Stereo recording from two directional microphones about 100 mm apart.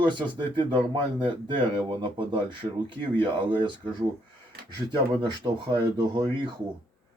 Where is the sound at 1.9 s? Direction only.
50° right (ahead or behind).